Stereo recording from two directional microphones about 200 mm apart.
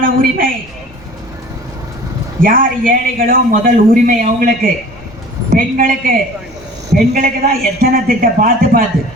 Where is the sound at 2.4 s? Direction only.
45° right (ahead or behind).